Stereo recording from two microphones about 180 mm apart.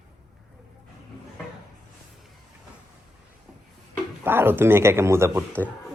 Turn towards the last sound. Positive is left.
turn(degrees=-15)  # may be behind; listen again after turning